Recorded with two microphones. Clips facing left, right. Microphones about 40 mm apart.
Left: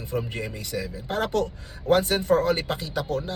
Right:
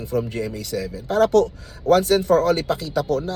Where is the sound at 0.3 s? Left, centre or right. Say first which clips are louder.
Right 5 dB; left.